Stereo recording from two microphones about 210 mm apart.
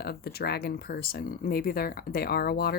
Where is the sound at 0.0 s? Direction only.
50° left (ahead or behind).